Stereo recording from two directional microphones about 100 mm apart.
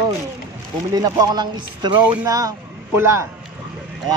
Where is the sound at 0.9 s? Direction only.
35° right (ahead or behind).